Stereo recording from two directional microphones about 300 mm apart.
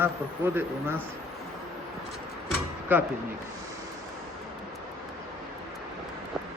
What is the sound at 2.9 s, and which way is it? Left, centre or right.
Speech, centre.